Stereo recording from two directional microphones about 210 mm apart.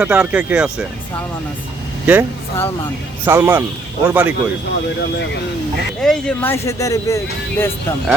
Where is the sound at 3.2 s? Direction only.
10° right (ahead or behind).